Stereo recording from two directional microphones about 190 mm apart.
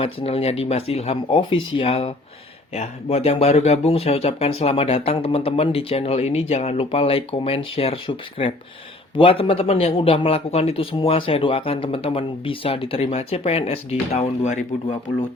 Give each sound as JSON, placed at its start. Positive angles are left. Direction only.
{"t": 0.0, "sound": "a man's voice", "side_deg": 30}